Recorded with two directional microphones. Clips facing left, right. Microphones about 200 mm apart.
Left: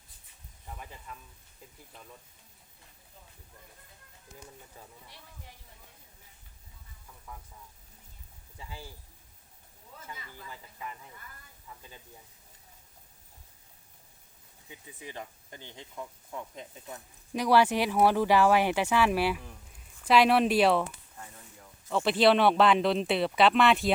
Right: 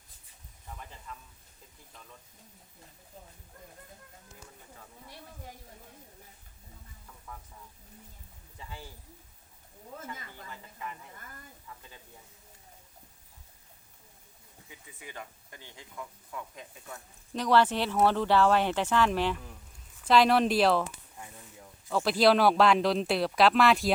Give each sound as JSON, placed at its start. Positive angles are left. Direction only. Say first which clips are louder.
{"t": 1.1, "sound": "a sound", "louder": "right 3 dB", "side_deg": 10}
{"t": 5.0, "sound": "speech", "louder": "right 6 dB", "side_deg": -45}
{"t": 8.5, "sound": "speech", "louder": "even", "side_deg": 10}
{"t": 9.9, "sound": "speech", "louder": "right 7 dB", "side_deg": -50}
{"t": 14.7, "sound": "speech", "louder": "left 3 dB", "side_deg": 25}
{"t": 17.3, "sound": "speech", "louder": "left 1 dB", "side_deg": 10}
{"t": 21.8, "sound": "speech", "louder": "even", "side_deg": 0}